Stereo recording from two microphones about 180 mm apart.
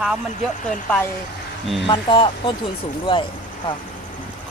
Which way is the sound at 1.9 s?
25° left (ahead or behind).